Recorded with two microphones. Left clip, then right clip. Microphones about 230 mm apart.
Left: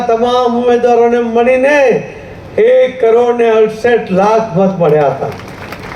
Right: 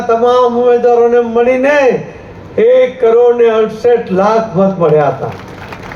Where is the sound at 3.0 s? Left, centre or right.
Left.